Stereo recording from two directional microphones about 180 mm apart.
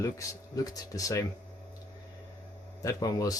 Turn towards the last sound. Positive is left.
turn(degrees=20)  # may be behind; listen again after turning